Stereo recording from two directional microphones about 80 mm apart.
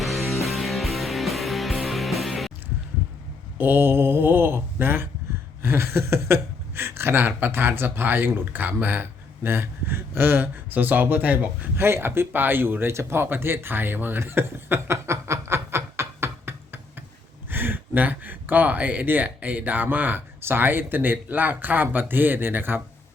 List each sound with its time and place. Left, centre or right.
0.0 s music: centre
3.6 s speech: right
11.9 s speech: right